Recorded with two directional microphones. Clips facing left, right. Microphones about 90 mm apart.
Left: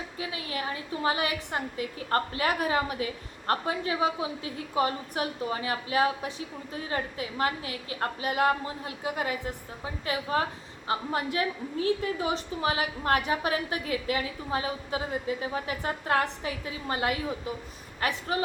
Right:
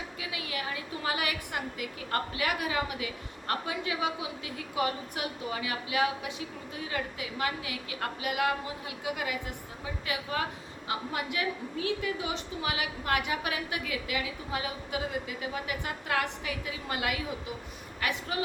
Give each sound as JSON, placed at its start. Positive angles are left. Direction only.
{"t": 0.2, "sound": "a woman's voice", "side_deg": 35}